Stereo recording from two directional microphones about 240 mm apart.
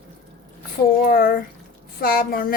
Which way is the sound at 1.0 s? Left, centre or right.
Left.